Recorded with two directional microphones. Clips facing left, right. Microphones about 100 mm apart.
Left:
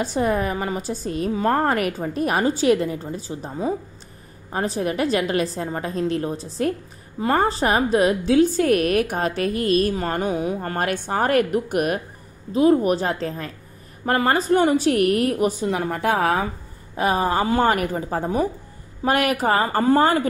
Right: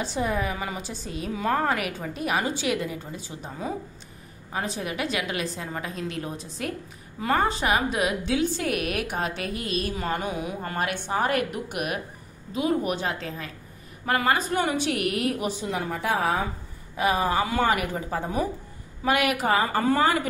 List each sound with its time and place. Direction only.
0.0 s a woman's voice: 45° left (ahead or behind); by 3.7 s 30° left (ahead or behind)
4.5 s a woman's voice: 40° left (ahead or behind); by 16.4 s 65° left (ahead or behind)
16.9 s a woman's voice: 40° left (ahead or behind)